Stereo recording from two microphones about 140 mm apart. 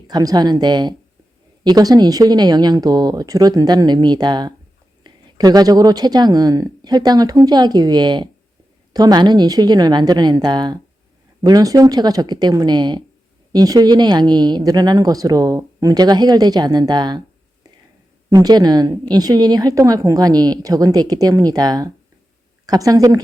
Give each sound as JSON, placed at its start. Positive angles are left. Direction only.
{"t": 0.1, "sound": "a woman's voice", "side_deg": -30}